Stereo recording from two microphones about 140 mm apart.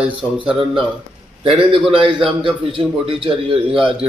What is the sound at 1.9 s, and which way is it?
Speech, 40° right (ahead or behind).